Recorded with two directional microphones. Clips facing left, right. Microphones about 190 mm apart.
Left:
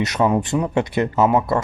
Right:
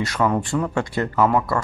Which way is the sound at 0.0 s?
20° left (ahead or behind).